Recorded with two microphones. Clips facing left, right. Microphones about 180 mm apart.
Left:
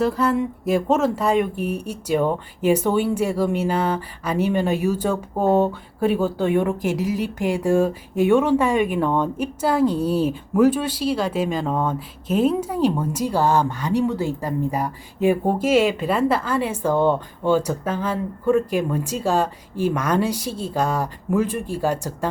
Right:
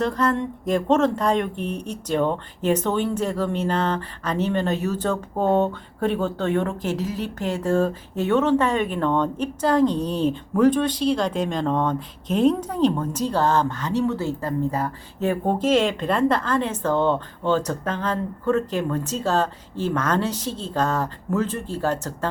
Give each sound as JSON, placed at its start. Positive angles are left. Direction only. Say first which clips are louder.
{"t": 0.0, "sound": "speech", "louder": "left 2 dB", "side_deg": 5}